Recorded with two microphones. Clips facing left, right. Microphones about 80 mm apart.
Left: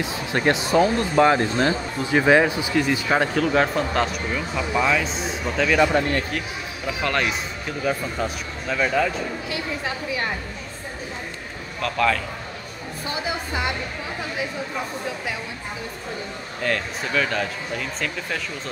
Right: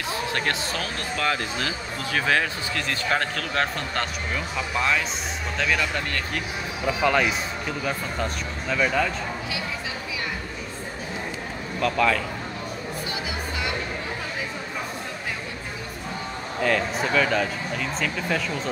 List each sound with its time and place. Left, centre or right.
0.1 s speech: centre
5.8 s speech: left
6.9 s speech: centre
11.8 s speech: centre
16.6 s speech: centre